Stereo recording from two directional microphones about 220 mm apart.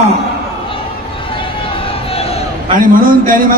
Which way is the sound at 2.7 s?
40° right (ahead or behind).